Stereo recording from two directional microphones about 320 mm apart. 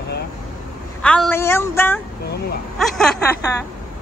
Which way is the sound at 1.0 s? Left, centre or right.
Centre.